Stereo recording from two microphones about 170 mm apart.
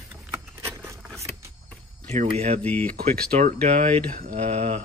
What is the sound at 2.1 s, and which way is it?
Speech, 40° right (ahead or behind).